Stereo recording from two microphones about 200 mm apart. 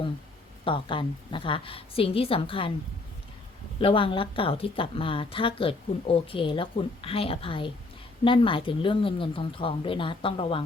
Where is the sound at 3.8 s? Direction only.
25° left (ahead or behind).